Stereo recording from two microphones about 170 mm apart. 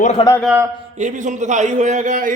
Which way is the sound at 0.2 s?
30° left (ahead or behind).